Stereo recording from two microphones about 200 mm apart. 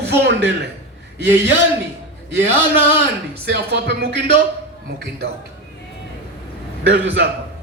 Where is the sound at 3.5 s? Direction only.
60° right (ahead or behind).